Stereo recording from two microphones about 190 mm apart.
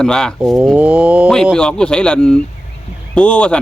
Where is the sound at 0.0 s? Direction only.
5° left (ahead or behind).